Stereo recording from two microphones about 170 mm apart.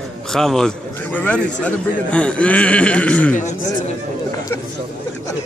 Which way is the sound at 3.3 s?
50° left (ahead or behind).